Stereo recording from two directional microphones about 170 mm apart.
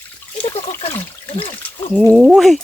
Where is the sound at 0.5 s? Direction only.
35° left (ahead or behind).